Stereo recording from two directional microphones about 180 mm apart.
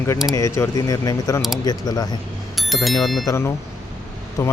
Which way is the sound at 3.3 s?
15° left (ahead or behind).